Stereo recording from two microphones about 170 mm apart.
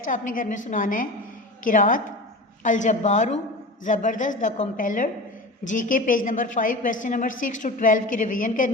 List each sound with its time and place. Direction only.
0.1 s a woman's voice: 50° left (ahead or behind)